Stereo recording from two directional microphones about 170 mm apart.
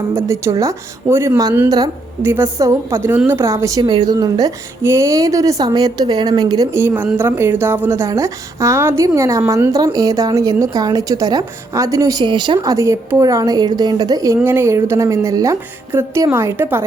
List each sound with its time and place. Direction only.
0.1 s a woman's voice: 15° right (ahead or behind)